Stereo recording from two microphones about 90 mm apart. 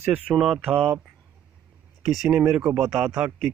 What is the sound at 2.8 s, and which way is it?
Speech, 5° right (ahead or behind).